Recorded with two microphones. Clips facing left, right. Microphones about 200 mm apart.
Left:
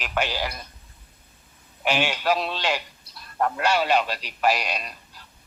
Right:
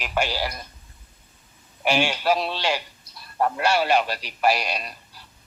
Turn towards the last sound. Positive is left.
turn(degrees=-10)  # may be behind; listen again after turning